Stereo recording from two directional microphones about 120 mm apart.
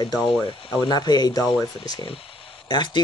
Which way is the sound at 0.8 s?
35° left (ahead or behind).